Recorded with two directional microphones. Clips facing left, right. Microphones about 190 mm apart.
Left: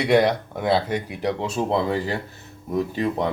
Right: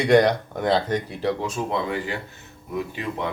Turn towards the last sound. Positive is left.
turn(degrees=35)  # may be behind; listen again after turning